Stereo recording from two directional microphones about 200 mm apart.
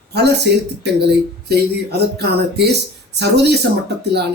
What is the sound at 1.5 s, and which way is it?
Speech, 55° right (ahead or behind).